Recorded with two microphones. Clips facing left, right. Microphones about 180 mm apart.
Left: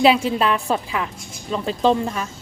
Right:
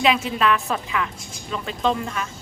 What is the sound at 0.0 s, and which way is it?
A woman's voice, 35° left (ahead or behind).